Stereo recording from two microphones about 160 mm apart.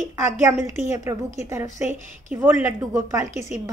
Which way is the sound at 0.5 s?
15° right (ahead or behind).